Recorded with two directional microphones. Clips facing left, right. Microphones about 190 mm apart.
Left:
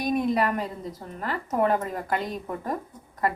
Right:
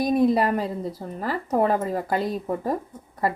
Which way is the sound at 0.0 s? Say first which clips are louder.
Right 4 dB; 35° right (ahead or behind).